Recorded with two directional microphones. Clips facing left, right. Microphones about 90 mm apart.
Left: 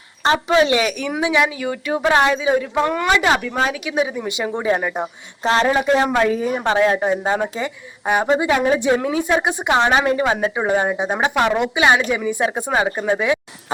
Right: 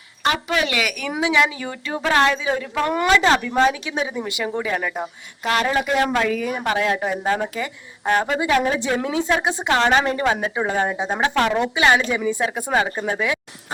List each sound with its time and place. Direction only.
0.3 s a woman's voice: 25° left (ahead or behind); by 4.1 s 10° left (ahead or behind)
4.3 s speech: 20° left (ahead or behind)
8.0 s a woman's voice: 15° left (ahead or behind)